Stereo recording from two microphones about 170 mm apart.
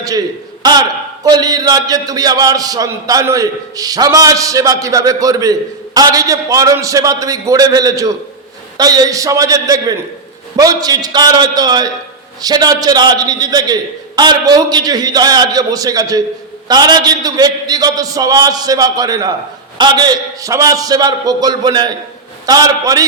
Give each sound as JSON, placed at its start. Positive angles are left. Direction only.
{"t": 0.6, "sound": "a man's voice", "side_deg": -25}